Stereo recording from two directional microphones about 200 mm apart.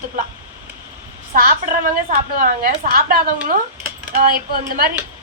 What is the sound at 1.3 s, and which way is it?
A woman's voice, 45° right (ahead or behind).